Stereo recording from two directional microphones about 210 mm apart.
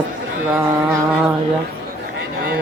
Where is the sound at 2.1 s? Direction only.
45° right (ahead or behind).